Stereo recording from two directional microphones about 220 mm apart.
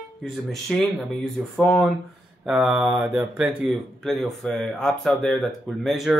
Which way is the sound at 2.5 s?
10° right (ahead or behind).